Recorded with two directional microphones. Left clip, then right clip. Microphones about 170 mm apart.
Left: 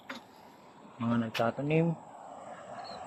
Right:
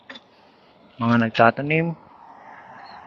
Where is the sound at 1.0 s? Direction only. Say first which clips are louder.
Right 14 dB; 25° right (ahead or behind).